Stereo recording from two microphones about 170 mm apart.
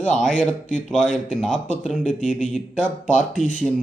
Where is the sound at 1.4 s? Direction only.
Centre (ahead or behind).